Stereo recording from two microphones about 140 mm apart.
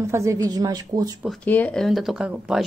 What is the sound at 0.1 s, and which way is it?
Speech, 20° right (ahead or behind).